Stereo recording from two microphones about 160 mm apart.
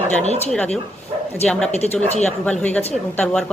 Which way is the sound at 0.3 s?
40° left (ahead or behind).